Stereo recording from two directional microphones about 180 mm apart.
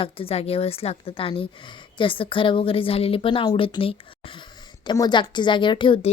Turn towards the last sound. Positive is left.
turn(degrees=30)  # may be behind; listen again after turning